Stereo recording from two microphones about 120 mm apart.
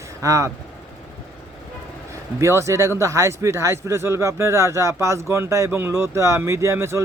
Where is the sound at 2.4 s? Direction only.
25° right (ahead or behind).